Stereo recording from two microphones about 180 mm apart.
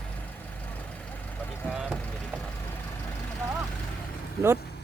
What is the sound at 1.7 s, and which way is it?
Vehicle, centre (ahead or behind).